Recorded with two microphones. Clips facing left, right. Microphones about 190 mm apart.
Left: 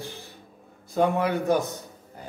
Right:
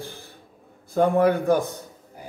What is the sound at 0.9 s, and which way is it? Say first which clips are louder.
Speech: right 4 dB; 55° right (ahead or behind).